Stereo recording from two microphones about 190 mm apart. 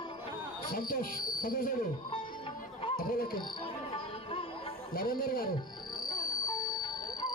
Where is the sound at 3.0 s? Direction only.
50° left (ahead or behind).